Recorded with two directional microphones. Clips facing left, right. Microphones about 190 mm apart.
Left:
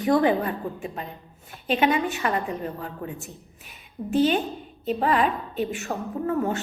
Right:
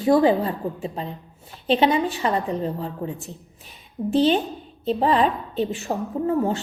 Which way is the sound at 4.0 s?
10° right (ahead or behind).